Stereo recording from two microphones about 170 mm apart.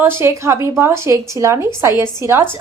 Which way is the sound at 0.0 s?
15° right (ahead or behind).